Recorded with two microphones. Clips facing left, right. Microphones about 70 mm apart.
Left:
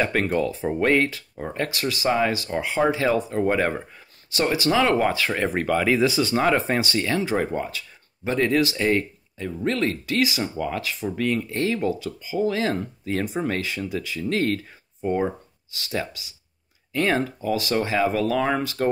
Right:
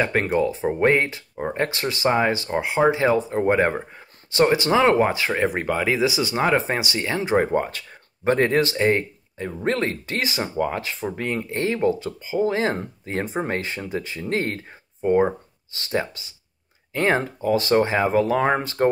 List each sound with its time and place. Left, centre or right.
0.0 s speech: centre
7.5 s speech: right